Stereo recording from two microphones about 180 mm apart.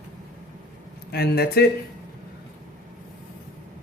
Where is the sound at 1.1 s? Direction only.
60° left (ahead or behind).